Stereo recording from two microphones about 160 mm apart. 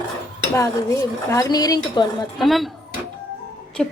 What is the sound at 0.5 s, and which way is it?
Dishes, 20° left (ahead or behind).